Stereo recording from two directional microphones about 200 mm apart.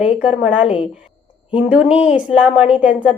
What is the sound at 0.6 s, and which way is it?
A woman's voice, 25° left (ahead or behind).